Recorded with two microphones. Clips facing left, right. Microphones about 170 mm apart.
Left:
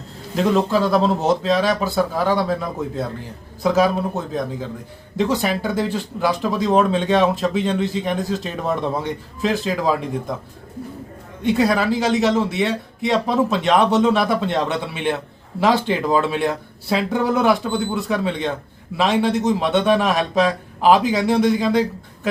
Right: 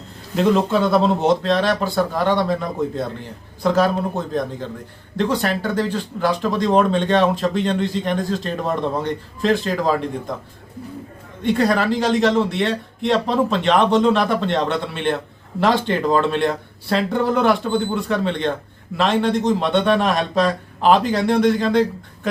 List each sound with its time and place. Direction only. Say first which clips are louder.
0.3 s speech: right 1 dB; centre (ahead or behind)
11.4 s a man's voice: even; 5° left (ahead or behind)